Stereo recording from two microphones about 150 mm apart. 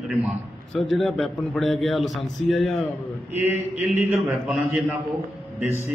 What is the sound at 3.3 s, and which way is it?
Speech, 45° left (ahead or behind).